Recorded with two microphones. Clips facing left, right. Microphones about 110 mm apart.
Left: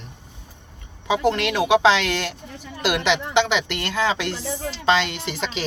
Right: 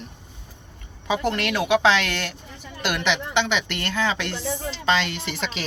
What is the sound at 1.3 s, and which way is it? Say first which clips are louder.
Speech: left 3 dB; 25° left (ahead or behind).